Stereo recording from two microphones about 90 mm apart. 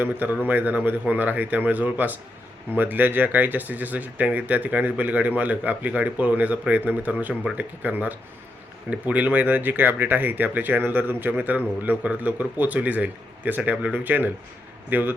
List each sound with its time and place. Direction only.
0.0 s speech: 20° right (ahead or behind)